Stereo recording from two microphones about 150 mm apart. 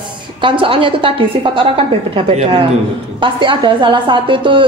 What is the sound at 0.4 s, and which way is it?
A woman's voice, 35° right (ahead or behind).